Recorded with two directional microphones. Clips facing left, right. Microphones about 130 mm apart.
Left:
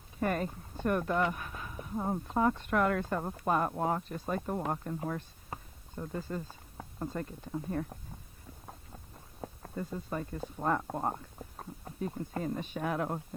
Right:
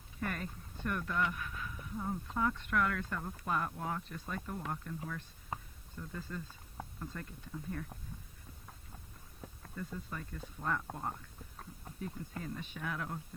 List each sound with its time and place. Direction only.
0.2 s speech: 30° left (ahead or behind)
9.6 s speech: 35° left (ahead or behind)